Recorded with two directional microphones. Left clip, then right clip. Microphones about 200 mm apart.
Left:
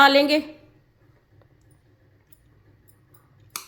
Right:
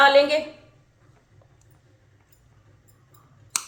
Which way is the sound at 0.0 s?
50° left (ahead or behind).